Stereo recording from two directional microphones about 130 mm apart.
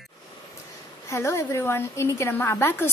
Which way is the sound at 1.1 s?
20° left (ahead or behind).